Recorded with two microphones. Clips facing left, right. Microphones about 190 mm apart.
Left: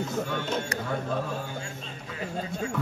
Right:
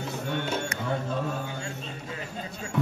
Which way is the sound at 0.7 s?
35° left (ahead or behind).